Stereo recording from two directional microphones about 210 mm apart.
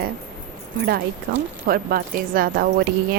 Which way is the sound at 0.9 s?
50° right (ahead or behind).